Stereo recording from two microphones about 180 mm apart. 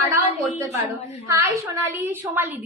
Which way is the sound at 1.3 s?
15° right (ahead or behind).